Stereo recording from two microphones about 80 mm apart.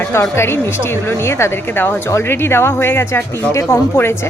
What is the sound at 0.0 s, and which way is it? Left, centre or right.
A woman's voice, left.